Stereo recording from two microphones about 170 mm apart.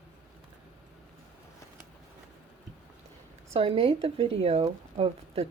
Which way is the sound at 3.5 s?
35° right (ahead or behind).